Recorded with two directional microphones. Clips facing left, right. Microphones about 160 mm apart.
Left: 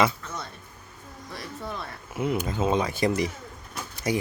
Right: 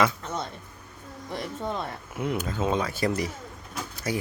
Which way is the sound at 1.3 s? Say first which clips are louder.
Right 5 dB; 25° right (ahead or behind).